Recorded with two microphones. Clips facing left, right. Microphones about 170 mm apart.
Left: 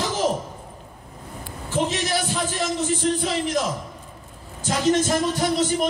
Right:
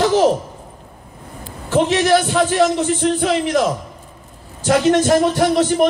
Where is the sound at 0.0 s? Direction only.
70° right (ahead or behind).